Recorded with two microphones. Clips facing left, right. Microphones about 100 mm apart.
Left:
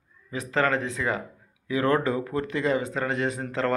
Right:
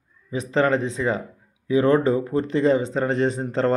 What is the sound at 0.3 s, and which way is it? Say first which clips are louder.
Speech: right 4 dB; 20° right (ahead or behind).